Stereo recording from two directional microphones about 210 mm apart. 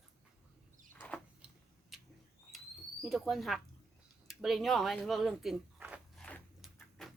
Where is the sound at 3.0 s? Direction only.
Centre (ahead or behind).